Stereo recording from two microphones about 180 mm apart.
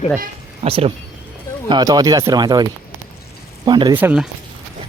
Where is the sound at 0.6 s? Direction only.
30° right (ahead or behind).